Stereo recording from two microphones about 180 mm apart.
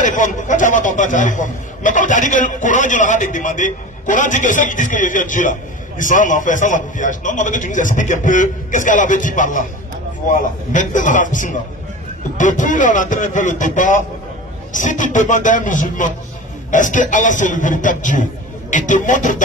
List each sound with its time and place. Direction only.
0.0 s a man's voice: 45° left (ahead or behind)